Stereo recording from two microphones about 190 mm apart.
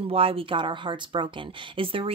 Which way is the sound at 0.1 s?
30° right (ahead or behind).